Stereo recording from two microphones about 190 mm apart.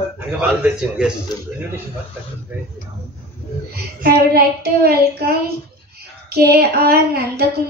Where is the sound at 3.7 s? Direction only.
55° right (ahead or behind).